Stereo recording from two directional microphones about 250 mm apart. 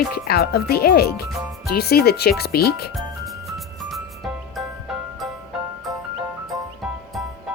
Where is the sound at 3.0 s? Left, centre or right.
Centre.